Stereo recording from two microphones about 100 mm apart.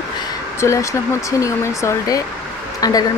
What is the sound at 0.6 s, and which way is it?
Speech, 30° left (ahead or behind).